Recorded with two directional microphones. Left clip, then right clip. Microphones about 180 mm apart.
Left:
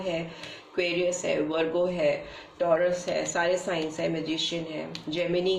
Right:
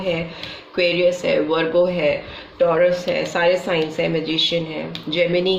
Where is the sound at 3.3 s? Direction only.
35° right (ahead or behind).